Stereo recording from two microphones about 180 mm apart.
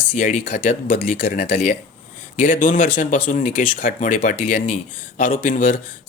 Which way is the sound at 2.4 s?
45° left (ahead or behind).